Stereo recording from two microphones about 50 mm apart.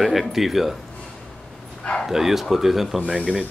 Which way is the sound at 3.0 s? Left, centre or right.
Right.